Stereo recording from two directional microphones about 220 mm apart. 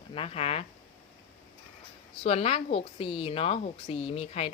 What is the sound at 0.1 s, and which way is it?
Speech, 25° left (ahead or behind).